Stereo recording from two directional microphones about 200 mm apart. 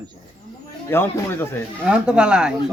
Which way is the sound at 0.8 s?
10° left (ahead or behind).